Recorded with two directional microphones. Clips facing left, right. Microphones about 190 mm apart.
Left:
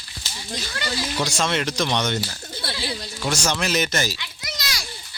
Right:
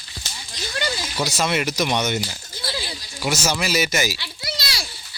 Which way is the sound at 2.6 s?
60° left (ahead or behind).